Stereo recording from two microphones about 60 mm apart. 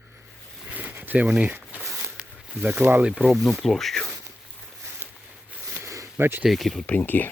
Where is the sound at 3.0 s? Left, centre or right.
Right.